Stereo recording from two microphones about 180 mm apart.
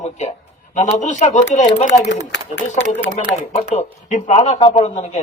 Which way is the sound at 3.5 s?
40° left (ahead or behind).